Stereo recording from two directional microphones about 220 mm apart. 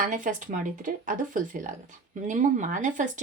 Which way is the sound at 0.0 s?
35° right (ahead or behind).